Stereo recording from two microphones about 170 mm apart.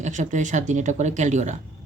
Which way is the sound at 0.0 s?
45° right (ahead or behind).